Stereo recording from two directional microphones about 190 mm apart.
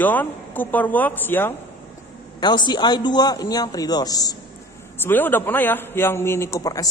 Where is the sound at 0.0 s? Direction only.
10° left (ahead or behind).